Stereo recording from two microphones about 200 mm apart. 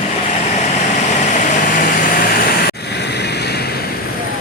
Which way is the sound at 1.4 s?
45° left (ahead or behind).